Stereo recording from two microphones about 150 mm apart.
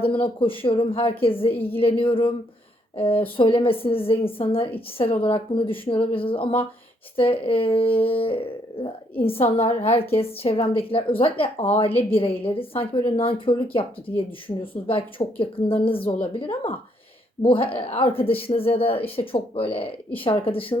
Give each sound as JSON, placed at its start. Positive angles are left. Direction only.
{"t": 0.0, "sound": "a woman's voice", "side_deg": 35}